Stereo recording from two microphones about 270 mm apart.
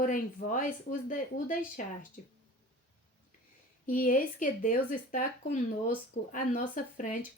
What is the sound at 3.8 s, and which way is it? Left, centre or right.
Speech, left.